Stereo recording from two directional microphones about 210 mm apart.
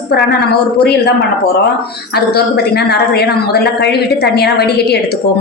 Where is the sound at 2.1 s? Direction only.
50° left (ahead or behind).